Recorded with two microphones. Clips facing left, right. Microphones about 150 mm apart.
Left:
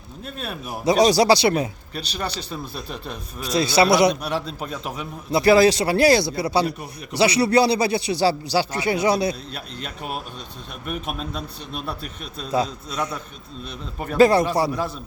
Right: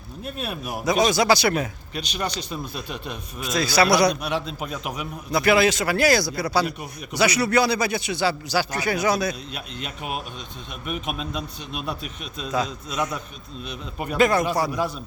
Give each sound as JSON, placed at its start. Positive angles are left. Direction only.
{"t": 0.3, "sound": "speech", "side_deg": -10}
{"t": 0.9, "sound": "a man's voice", "side_deg": 35}
{"t": 10.9, "sound": "speech", "side_deg": 40}
{"t": 12.5, "sound": "speech", "side_deg": 30}
{"t": 14.2, "sound": "a man's voice", "side_deg": 30}